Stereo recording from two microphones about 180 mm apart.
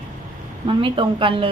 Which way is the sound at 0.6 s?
30° right (ahead or behind).